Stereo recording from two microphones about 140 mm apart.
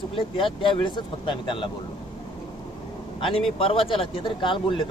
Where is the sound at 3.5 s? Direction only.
40° left (ahead or behind).